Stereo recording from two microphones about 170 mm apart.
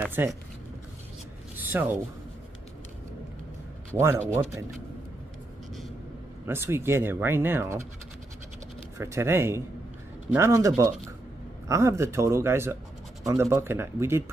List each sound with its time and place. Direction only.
0.0 s speech: 15° right (ahead or behind)
1.6 s a sound: 10° right (ahead or behind)
3.9 s speech: 15° right (ahead or behind)
6.4 s speech: 15° right (ahead or behind)
8.9 s speech: 15° right (ahead or behind)